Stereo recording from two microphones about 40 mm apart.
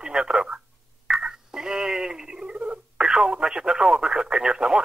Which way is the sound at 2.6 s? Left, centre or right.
Right.